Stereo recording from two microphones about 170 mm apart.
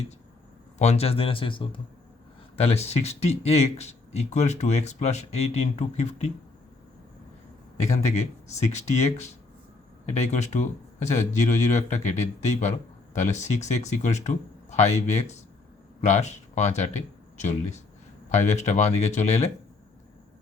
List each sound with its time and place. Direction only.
0.8 s speech: 40° left (ahead or behind)
7.9 s speech: 40° left (ahead or behind)